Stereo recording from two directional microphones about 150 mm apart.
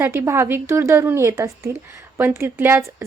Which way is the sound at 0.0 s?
20° right (ahead or behind).